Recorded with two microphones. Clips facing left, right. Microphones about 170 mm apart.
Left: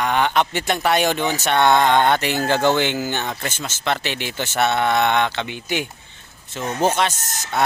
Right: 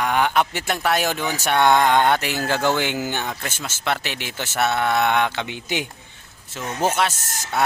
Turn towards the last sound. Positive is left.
turn(degrees=-5)  # may be behind; listen again after turning